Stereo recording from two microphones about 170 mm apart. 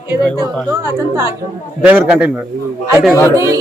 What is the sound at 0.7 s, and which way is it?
A woman's voice, 15° right (ahead or behind).